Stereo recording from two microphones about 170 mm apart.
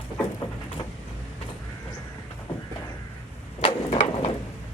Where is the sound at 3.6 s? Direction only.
35° left (ahead or behind).